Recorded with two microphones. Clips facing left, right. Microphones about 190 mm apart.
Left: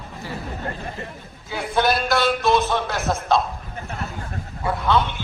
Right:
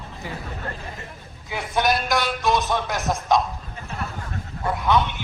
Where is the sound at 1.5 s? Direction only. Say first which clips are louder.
Left 2 dB; 15° right (ahead or behind).